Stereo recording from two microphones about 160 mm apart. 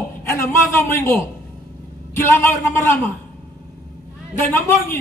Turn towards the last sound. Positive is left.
turn(degrees=15)  # may be behind; listen again after turning